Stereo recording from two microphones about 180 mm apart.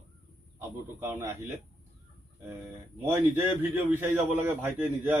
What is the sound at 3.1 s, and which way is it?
A man's voice, 10° right (ahead or behind).